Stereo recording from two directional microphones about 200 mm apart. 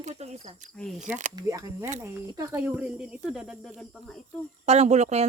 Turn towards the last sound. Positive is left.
turn(degrees=-35)  # may be behind; listen again after turning